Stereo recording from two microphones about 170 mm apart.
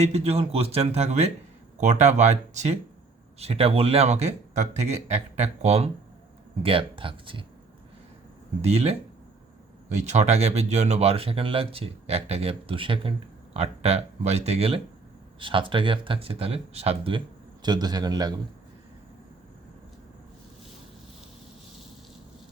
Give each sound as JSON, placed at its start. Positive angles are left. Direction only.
{"t": 0.0, "sound": "speech", "side_deg": -40}
{"t": 8.6, "sound": "speech", "side_deg": -40}